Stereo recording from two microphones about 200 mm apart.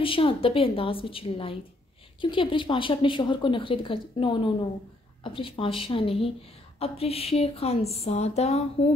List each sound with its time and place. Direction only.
0.0 s speech: 25° left (ahead or behind)